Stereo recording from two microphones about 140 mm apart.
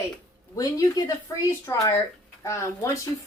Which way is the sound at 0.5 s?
25° left (ahead or behind).